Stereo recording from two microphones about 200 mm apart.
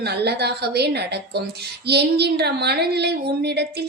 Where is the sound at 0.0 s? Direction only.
55° right (ahead or behind).